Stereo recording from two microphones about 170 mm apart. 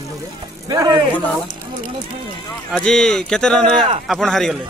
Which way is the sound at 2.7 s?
5° left (ahead or behind).